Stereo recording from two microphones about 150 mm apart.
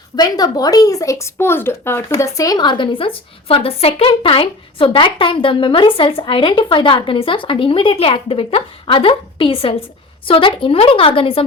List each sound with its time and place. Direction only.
0.2 s speech: 25° left (ahead or behind)